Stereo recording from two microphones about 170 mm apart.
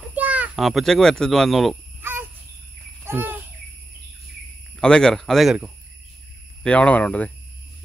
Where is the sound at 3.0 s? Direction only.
10° right (ahead or behind).